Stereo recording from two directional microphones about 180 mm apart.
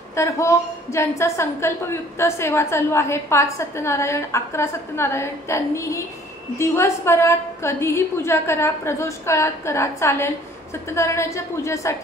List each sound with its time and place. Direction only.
0.1 s a woman's voice: 15° left (ahead or behind)